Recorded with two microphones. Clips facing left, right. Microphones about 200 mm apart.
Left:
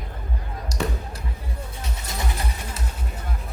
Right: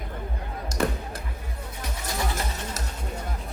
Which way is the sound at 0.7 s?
50° right (ahead or behind).